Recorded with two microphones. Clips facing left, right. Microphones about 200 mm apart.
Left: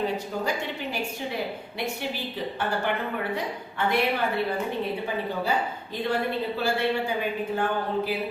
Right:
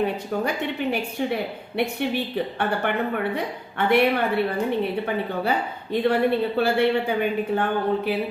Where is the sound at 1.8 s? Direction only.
60° right (ahead or behind).